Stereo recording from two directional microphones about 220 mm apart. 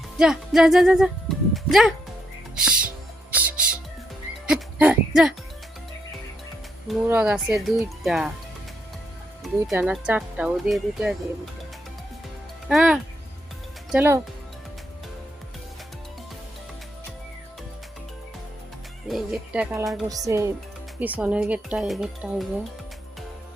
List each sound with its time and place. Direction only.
0.2 s speech: 5° right (ahead or behind)
3.3 s music: 5° right (ahead or behind)
4.4 s a sound: 5° right (ahead or behind)
6.8 s speech: 5° right (ahead or behind)
9.4 s speech: centre (ahead or behind)
12.6 s speech: 5° right (ahead or behind)
19.0 s speech: centre (ahead or behind)